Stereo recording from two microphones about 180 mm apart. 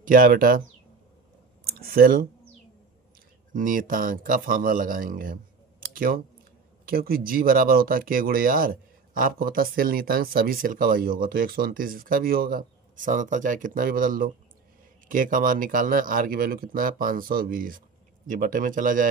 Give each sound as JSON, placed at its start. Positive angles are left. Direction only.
{"t": 0.0, "sound": "speech", "side_deg": -50}
{"t": 1.7, "sound": "speech", "side_deg": -55}
{"t": 3.5, "sound": "speech", "side_deg": -50}